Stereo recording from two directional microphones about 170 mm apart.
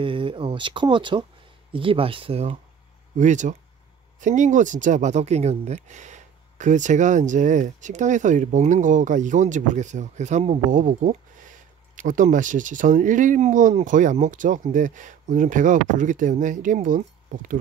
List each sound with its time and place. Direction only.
0.0 s speech: 30° right (ahead or behind)
3.2 s speech: 45° right (ahead or behind)